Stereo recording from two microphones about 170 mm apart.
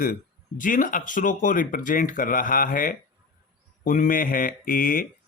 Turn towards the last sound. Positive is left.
turn(degrees=55)  # may be behind; listen again after turning